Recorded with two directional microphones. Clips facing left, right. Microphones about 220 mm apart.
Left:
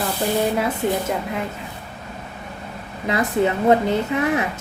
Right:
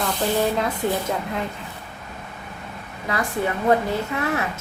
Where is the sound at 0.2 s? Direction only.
10° left (ahead or behind).